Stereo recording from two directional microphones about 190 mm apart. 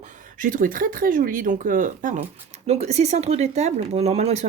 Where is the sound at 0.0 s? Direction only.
45° right (ahead or behind).